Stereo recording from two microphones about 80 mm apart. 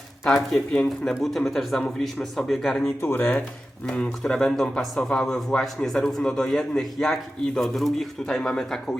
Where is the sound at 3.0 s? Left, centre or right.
Left.